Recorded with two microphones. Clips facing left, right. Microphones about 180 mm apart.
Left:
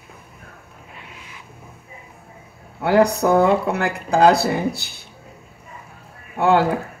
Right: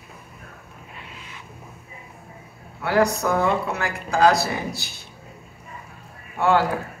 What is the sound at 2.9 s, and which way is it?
Speech, 60° left (ahead or behind).